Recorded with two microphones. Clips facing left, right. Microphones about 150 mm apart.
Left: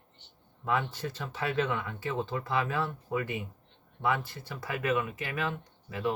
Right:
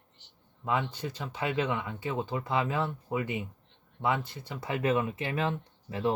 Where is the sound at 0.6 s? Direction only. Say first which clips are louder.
Even; 15° right (ahead or behind).